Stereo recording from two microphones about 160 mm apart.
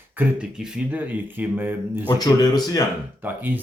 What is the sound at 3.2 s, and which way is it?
Speech, 10° right (ahead or behind).